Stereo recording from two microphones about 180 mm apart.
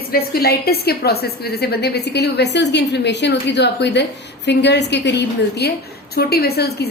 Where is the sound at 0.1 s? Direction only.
55° left (ahead or behind).